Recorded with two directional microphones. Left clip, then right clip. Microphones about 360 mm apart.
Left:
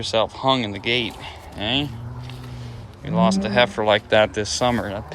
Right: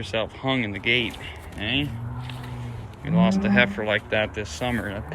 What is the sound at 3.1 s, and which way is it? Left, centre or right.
Speech, centre.